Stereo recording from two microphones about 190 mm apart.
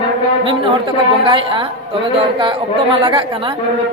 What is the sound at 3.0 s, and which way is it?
Speech, 25° right (ahead or behind).